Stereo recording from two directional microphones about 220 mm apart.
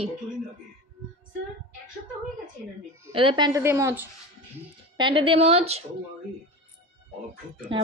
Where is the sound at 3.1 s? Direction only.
20° right (ahead or behind).